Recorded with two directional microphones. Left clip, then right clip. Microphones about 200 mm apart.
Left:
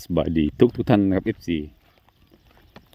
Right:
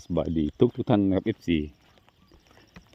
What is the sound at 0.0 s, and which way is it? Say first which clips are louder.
Speech: left 5 dB; 25° left (ahead or behind).